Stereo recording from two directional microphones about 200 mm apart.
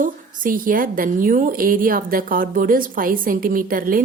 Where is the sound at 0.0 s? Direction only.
45° right (ahead or behind).